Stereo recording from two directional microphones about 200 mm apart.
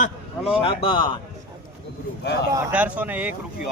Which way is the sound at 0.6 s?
25° left (ahead or behind).